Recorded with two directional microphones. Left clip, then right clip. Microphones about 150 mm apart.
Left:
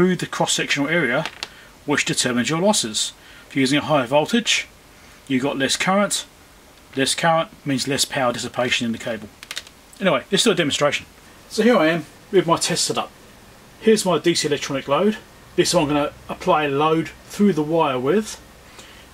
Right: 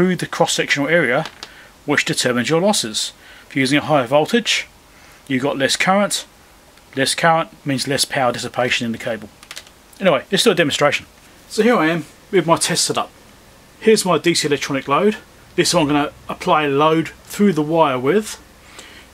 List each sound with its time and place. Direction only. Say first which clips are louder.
0.0 s speech: right 3 dB; 15° right (ahead or behind)
11.5 s speech: right 1 dB; 40° right (ahead or behind)